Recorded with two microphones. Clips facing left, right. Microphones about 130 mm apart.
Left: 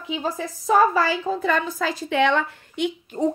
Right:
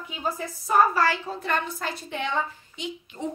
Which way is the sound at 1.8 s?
90° left.